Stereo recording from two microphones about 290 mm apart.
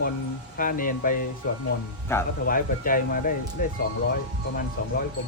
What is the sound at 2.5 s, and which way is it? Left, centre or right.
Speech, left.